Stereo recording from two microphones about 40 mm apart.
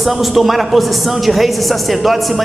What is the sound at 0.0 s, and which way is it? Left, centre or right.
A man's voice, centre.